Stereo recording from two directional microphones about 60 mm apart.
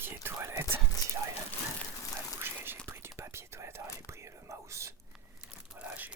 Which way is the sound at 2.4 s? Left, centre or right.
Right.